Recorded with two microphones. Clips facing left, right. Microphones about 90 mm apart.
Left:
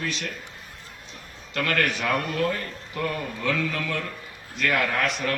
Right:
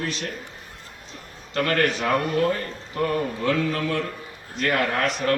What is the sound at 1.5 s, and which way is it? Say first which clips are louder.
A man's voice: right 3 dB; 35° right (ahead or behind).